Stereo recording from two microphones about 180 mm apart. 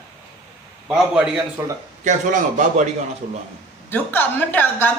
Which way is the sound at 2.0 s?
45° right (ahead or behind).